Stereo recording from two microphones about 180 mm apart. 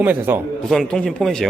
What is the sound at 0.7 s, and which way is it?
Speech, 5° left (ahead or behind).